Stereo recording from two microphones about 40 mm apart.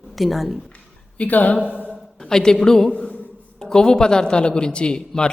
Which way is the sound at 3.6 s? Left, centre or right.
Centre.